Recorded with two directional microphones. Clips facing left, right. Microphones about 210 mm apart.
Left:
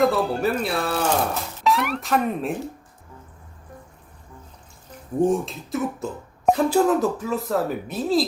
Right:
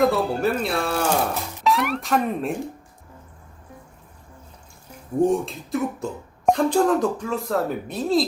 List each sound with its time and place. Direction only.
0.0 s speech: centre (ahead or behind)
1.0 s speech: 10° right (ahead or behind)
5.2 s speech: centre (ahead or behind)